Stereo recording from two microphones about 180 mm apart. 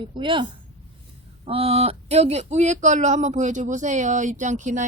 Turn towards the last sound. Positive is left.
turn(degrees=-45)  # may be behind; listen again after turning